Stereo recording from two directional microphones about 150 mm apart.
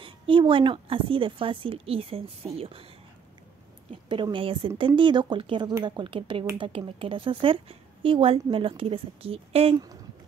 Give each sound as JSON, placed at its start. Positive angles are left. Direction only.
{"t": 0.0, "sound": "speech", "side_deg": -35}
{"t": 3.9, "sound": "speech", "side_deg": -35}